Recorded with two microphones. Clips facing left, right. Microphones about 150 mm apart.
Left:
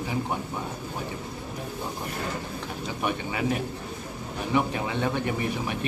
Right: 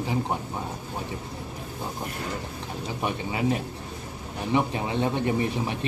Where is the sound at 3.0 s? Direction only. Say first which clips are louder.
Right 1 dB; 25° right (ahead or behind).